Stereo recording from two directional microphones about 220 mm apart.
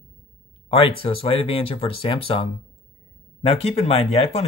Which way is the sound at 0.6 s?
25° left (ahead or behind).